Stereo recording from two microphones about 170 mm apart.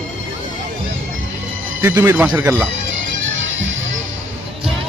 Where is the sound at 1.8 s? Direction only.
15° right (ahead or behind).